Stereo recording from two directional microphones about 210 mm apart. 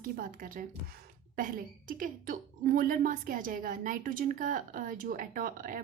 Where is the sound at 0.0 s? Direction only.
40° right (ahead or behind).